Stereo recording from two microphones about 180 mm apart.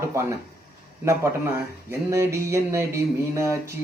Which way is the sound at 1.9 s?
15° right (ahead or behind).